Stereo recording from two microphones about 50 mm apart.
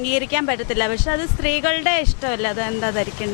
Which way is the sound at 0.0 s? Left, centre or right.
Left.